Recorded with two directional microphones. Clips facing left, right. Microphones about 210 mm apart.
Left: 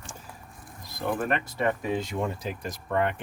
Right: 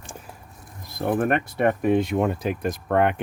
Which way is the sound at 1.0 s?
55° right (ahead or behind).